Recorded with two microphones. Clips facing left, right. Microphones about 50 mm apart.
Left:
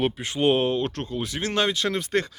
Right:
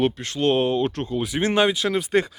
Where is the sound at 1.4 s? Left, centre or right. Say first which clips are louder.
Right 5 dB; right.